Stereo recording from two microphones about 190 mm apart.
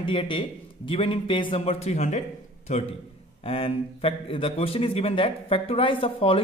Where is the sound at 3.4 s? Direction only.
30° left (ahead or behind).